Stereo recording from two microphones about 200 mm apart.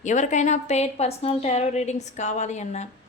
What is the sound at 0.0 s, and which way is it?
A woman's voice, 35° left (ahead or behind).